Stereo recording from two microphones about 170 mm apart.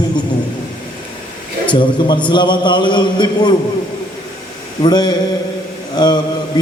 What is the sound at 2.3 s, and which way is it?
A man's voice, 25° left (ahead or behind).